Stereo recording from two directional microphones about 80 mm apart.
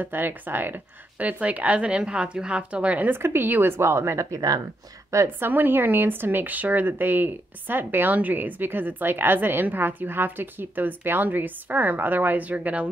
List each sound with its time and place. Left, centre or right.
0.0 s speech: right
3.2 s a woman's voice: right
5.1 s speech: right